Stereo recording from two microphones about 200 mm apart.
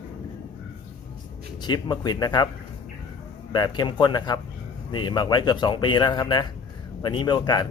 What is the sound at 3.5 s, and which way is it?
Speech, 20° left (ahead or behind).